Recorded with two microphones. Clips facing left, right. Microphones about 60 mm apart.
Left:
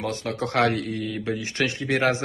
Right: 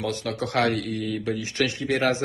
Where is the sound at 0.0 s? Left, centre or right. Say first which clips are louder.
Even; left.